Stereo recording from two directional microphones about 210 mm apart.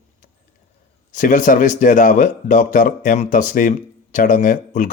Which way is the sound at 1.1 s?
40° left (ahead or behind).